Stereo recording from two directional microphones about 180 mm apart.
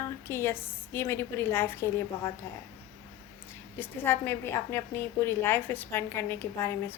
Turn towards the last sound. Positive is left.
turn(degrees=10)  # may be behind; listen again after turning